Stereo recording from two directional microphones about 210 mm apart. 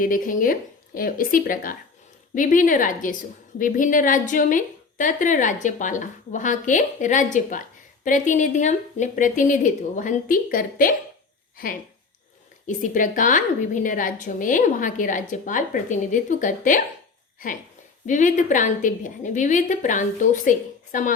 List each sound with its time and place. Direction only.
0.0 s a woman's voice: 40° left (ahead or behind)
18.0 s a woman's voice: 35° left (ahead or behind)